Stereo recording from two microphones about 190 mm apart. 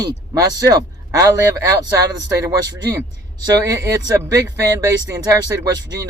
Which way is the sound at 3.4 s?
20° right (ahead or behind).